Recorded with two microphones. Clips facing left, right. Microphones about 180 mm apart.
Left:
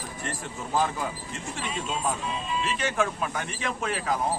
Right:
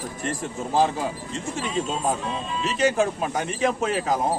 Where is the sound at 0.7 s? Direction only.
30° right (ahead or behind).